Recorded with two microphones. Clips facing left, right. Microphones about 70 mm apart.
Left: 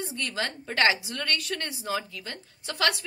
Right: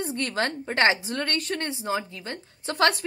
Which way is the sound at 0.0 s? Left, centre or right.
Right.